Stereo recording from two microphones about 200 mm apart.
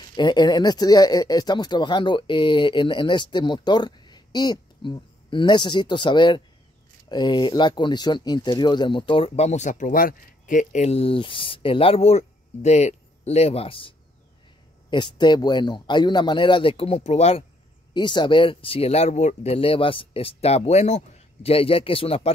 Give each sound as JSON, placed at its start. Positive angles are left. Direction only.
{"t": 0.1, "sound": "speech", "side_deg": 20}